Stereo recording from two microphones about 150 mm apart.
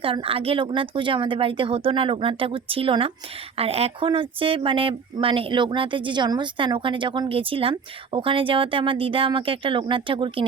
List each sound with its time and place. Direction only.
0.0 s speech: 35° right (ahead or behind)